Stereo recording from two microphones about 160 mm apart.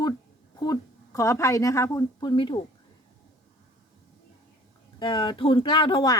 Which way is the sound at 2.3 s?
30° left (ahead or behind).